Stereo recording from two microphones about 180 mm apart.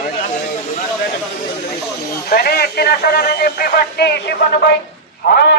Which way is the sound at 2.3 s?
60° left (ahead or behind).